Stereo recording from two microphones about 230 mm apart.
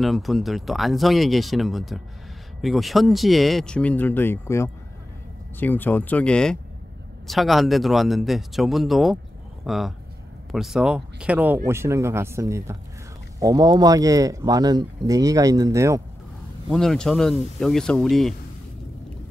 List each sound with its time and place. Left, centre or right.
0.0 s speech: centre
16.6 s speech: centre